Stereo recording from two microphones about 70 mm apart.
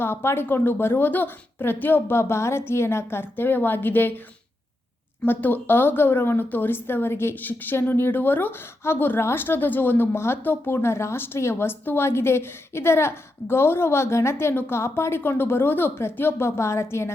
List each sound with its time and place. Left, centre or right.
0.0 s speech: left
5.2 s speech: left